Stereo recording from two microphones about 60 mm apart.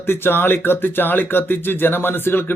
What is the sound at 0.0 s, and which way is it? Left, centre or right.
Speech, left.